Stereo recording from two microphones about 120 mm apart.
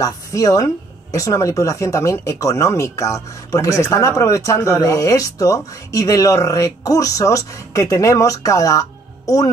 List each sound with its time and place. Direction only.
0.0 s speech: 30° left (ahead or behind)